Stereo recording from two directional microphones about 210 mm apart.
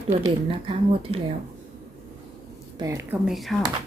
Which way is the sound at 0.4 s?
25° right (ahead or behind).